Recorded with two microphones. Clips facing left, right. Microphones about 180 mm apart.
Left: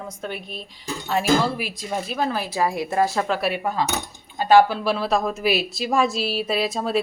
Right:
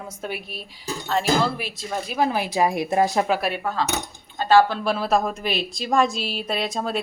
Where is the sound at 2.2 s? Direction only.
15° right (ahead or behind).